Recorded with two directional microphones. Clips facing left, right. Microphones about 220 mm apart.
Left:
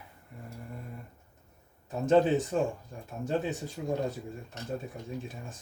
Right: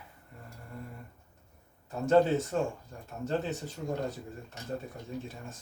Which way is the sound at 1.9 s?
20° left (ahead or behind).